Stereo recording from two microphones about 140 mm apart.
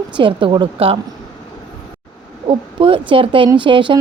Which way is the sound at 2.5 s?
40° right (ahead or behind).